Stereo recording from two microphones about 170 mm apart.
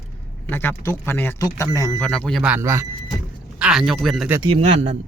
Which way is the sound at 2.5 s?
15° right (ahead or behind).